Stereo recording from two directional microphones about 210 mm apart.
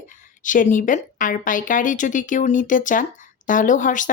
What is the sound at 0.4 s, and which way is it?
Speech, 40° left (ahead or behind).